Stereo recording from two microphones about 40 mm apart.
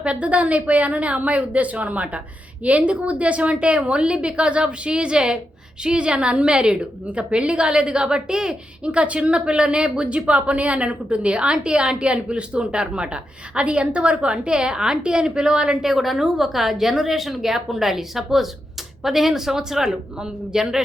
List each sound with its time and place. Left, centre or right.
0.0 s a woman's voice: right
15.9 s a woman's voice: centre